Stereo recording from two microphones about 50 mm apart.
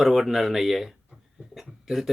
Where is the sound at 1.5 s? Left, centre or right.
Centre.